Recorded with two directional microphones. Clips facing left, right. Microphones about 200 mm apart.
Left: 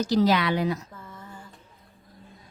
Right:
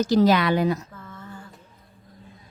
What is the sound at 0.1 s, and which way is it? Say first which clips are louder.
Speech: right 3 dB; 50° right (ahead or behind).